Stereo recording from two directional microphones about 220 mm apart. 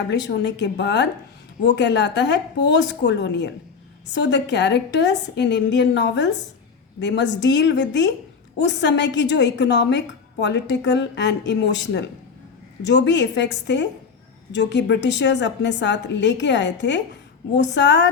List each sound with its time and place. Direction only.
0.1 s a woman's voice: 50° left (ahead or behind)